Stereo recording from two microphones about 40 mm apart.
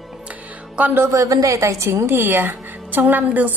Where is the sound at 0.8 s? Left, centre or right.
Right.